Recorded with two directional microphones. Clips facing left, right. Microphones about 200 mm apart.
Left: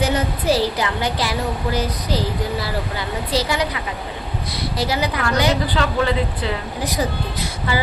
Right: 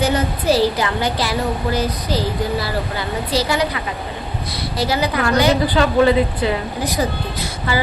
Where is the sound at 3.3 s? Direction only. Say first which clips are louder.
Right 2 dB; 20° left (ahead or behind).